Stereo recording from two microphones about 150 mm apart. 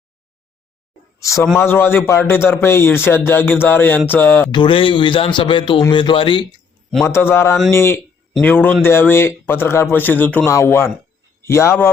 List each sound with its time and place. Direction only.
1.2 s speech: 20° left (ahead or behind)
4.5 s a man's voice: 35° left (ahead or behind)
7.0 s speech: 15° left (ahead or behind)